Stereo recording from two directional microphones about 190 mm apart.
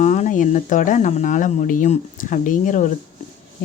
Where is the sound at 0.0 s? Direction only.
40° left (ahead or behind).